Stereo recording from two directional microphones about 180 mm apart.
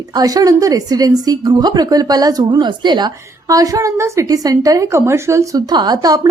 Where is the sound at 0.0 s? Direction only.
20° right (ahead or behind).